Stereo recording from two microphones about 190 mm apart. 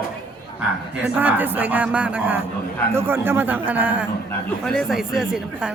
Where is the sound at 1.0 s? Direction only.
10° right (ahead or behind).